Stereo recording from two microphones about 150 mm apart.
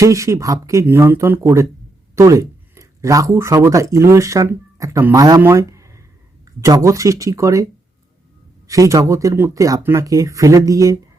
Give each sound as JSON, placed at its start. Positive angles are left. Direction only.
{"t": 0.0, "sound": "speech", "side_deg": -20}
{"t": 5.4, "sound": "a sound", "side_deg": -20}
{"t": 6.4, "sound": "speech", "side_deg": -20}